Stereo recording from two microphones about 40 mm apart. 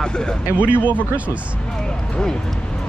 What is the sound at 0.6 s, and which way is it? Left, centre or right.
Speech, right.